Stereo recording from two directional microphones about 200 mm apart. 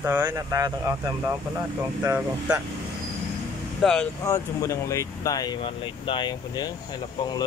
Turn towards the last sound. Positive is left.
turn(degrees=20)  # may be behind; listen again after turning